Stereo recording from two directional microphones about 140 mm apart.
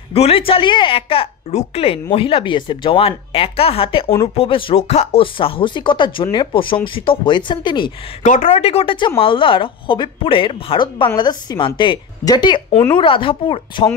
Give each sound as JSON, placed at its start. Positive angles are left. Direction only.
{"t": 0.1, "sound": "speech", "side_deg": 45}
{"t": 8.2, "sound": "speech", "side_deg": 60}
{"t": 8.5, "sound": "speech", "side_deg": 45}